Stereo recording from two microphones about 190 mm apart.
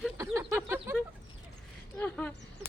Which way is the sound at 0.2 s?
15° right (ahead or behind).